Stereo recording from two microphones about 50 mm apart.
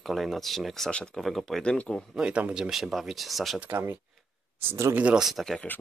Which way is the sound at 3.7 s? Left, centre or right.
Right.